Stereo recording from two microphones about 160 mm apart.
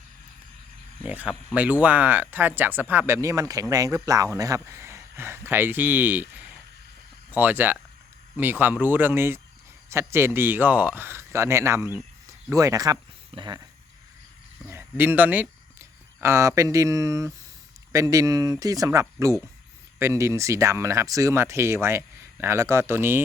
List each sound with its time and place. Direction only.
1.0 s speech: 10° right (ahead or behind); by 13.6 s 25° right (ahead or behind)
14.7 s speech: 15° right (ahead or behind)